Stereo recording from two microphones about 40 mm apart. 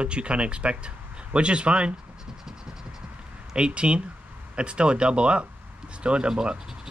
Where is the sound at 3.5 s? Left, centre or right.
Right.